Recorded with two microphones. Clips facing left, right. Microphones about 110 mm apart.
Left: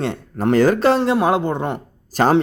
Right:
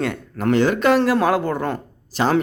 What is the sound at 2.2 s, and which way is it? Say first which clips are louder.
Speech: left 4 dB; 50° left (ahead or behind).